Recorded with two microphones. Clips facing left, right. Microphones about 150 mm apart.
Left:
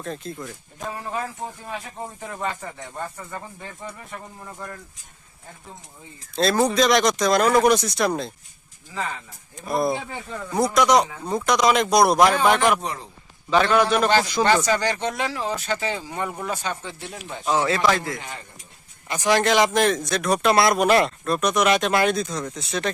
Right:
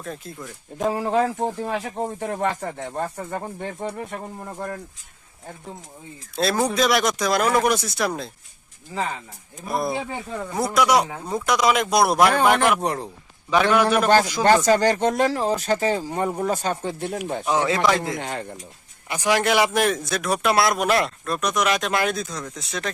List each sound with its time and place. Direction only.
0.0 s a man's voice: 5° right (ahead or behind)
0.9 s speech: 75° right (ahead or behind)
2.5 s speech: 45° right (ahead or behind)
3.6 s speech: 55° right (ahead or behind); by 4.7 s 40° right (ahead or behind)
6.3 s a man's voice: 5° right (ahead or behind)
9.6 s a man's voice: centre (ahead or behind)
12.8 s a man's voice: 60° right (ahead or behind)
13.5 s speech: 10° right (ahead or behind)
14.4 s speech: 45° right (ahead or behind)
17.7 s a man's voice: 15° right (ahead or behind)
18.2 s speech: 70° right (ahead or behind)
19.0 s a man's voice: 10° right (ahead or behind)